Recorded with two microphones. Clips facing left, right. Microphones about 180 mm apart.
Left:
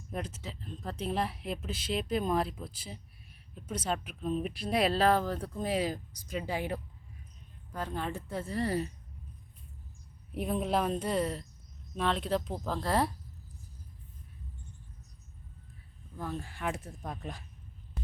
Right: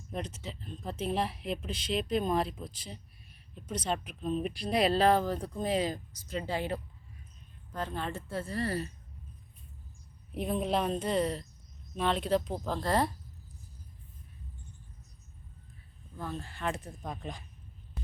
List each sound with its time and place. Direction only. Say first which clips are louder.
0.1 s speech: even; 5° left (ahead or behind)
10.4 s speech: even; 5° left (ahead or behind)
16.1 s speech: left 1 dB; 10° left (ahead or behind)